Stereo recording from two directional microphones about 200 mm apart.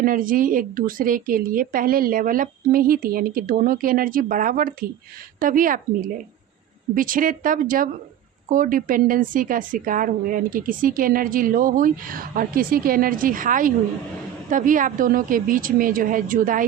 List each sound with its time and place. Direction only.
0.0 s a woman's voice: 45° right (ahead or behind)